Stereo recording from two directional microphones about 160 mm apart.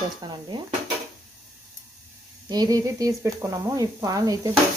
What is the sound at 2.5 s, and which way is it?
Speech, 25° right (ahead or behind).